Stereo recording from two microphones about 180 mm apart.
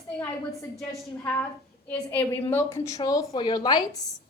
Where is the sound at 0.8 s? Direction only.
10° left (ahead or behind).